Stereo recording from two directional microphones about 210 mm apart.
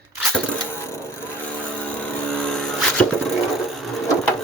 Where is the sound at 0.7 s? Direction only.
10° left (ahead or behind).